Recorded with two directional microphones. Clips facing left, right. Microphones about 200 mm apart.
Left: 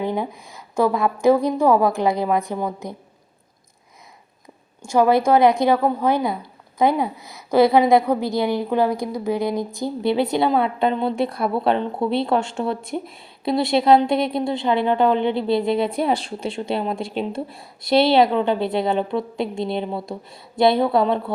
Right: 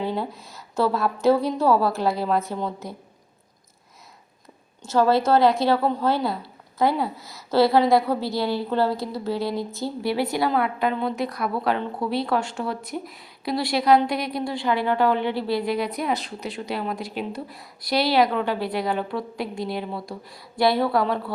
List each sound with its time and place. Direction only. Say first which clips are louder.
0.0 s a woman's voice: left 3 dB; 15° left (ahead or behind)
4.8 s speech: left 3 dB; 15° left (ahead or behind)